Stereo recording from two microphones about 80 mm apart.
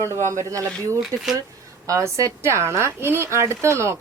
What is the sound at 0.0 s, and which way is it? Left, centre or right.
Speech, right.